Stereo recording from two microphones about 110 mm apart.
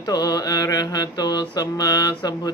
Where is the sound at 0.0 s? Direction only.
35° left (ahead or behind).